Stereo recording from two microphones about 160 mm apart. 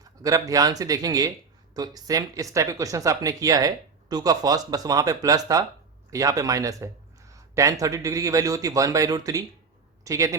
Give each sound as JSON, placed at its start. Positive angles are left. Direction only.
{"t": 0.2, "sound": "speech", "side_deg": -20}